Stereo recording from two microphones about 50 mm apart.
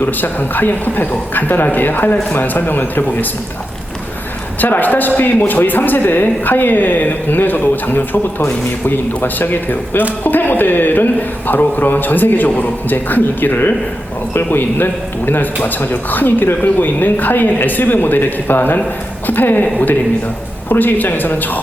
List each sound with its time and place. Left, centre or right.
0.0 s a man's voice: left
4.6 s a man's voice: left